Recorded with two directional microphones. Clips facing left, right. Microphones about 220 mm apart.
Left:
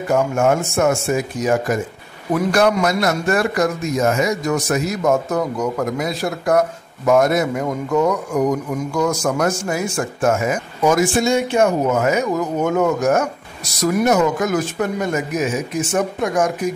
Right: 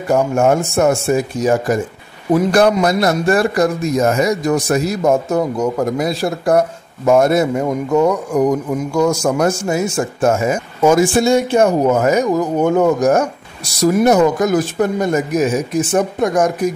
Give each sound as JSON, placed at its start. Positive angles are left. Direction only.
{"t": 0.1, "sound": "a man's voice", "side_deg": -35}